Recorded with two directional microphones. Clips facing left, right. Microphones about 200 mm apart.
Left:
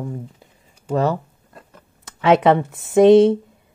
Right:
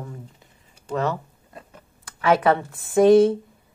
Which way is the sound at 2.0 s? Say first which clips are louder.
Left 4 dB; 25° left (ahead or behind).